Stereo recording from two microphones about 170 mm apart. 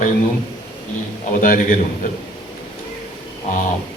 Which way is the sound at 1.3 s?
50° left (ahead or behind).